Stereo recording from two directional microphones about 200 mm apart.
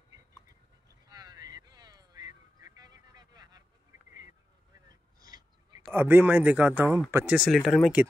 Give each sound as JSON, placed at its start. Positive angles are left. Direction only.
{"t": 1.0, "sound": "vehicle", "side_deg": -20}
{"t": 4.8, "sound": "a sound", "side_deg": -20}
{"t": 5.9, "sound": "speech", "side_deg": -10}